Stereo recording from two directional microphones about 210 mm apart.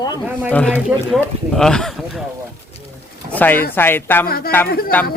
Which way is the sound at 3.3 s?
10° left (ahead or behind).